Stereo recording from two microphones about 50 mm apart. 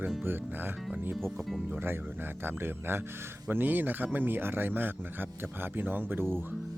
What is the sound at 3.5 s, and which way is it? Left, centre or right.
Speech, right.